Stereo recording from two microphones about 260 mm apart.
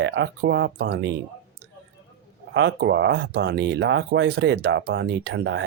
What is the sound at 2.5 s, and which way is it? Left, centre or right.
Speech, right.